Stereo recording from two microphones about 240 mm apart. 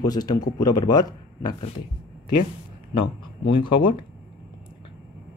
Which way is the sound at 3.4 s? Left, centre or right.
Centre.